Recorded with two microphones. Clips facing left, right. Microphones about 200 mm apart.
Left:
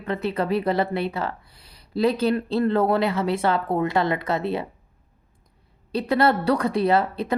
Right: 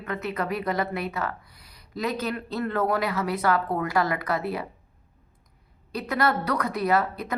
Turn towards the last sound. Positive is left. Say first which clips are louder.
# left 3 dB
turn(degrees=25)  # may be behind; listen again after turning